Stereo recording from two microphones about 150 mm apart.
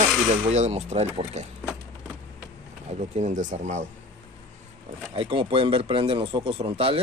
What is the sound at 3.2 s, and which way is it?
Speech, 55° right (ahead or behind).